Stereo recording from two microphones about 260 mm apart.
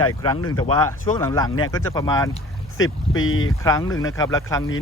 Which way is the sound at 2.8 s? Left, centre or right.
Left.